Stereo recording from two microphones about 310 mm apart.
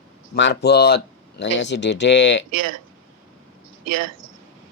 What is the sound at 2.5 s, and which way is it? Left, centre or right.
Speech, right.